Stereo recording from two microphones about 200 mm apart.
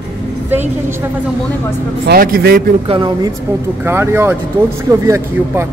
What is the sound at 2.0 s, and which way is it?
Speech, 45° right (ahead or behind).